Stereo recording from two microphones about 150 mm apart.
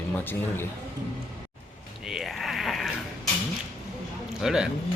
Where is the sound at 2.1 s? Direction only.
Centre (ahead or behind).